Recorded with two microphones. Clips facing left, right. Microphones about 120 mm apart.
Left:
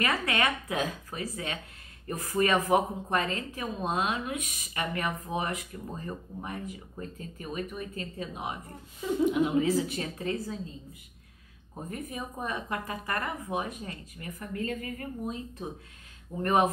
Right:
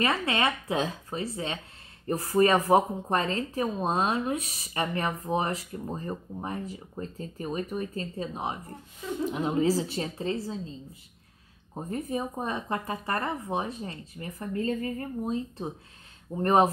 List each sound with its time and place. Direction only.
0.0 s a woman's voice: 25° right (ahead or behind)